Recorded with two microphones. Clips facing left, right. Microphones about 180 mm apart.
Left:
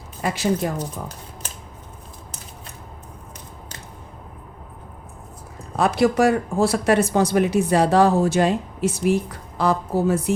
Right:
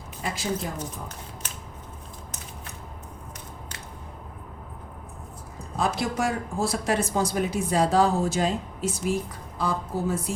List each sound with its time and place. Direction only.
0.2 s speech: 75° left (ahead or behind)
0.8 s speech: 35° left (ahead or behind)
5.7 s speech: 70° left (ahead or behind)